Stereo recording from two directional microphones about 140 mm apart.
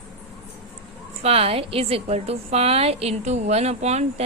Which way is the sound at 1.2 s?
45° right (ahead or behind).